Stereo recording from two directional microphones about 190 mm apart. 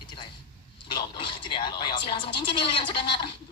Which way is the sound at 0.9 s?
25° left (ahead or behind).